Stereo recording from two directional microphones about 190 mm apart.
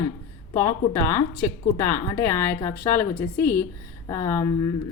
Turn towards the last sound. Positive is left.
turn(degrees=20)  # may be behind; listen again after turning